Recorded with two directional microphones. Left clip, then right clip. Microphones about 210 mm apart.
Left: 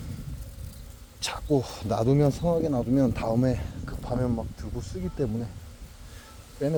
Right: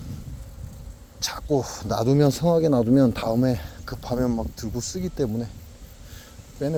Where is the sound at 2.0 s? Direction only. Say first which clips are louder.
Right 5 dB; 25° right (ahead or behind).